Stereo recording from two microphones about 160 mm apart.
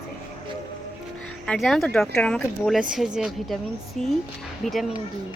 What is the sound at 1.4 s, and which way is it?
Speech, 5° left (ahead or behind).